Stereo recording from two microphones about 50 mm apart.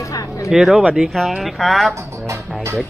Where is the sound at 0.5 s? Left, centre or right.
Centre.